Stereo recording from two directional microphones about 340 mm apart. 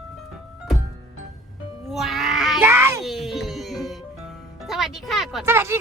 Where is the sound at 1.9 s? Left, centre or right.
Centre.